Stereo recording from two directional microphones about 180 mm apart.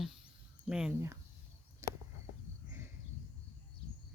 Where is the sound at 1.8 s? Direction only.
20° right (ahead or behind).